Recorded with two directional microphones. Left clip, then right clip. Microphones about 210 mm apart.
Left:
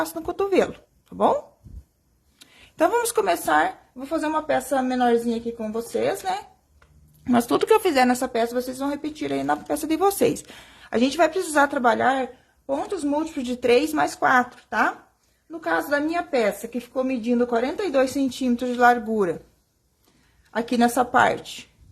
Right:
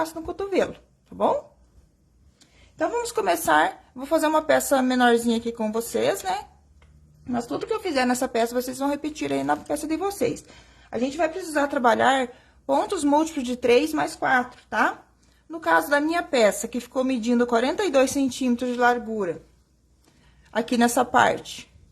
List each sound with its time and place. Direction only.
0.0 s speech: 15° left (ahead or behind)
2.4 s a sound: 30° left (ahead or behind)
3.2 s a woman's voice: centre (ahead or behind)
7.3 s a woman's voice: 30° left (ahead or behind); by 8.2 s 15° left (ahead or behind)
8.2 s speech: centre (ahead or behind)
9.6 s a woman's voice: 15° left (ahead or behind)
11.6 s a woman's voice: 5° left (ahead or behind); by 13.4 s 15° right (ahead or behind)
13.4 s a woman's voice: centre (ahead or behind); by 19.4 s 20° left (ahead or behind)
20.5 s speech: centre (ahead or behind)